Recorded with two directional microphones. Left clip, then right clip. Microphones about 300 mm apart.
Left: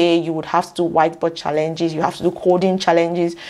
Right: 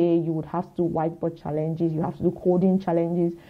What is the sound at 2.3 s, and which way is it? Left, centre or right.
Speech, left.